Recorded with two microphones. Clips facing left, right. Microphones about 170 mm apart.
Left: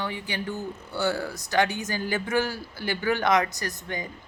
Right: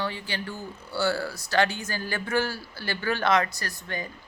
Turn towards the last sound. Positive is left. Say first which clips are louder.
# left 2 dB
turn(degrees=20)  # may be behind; listen again after turning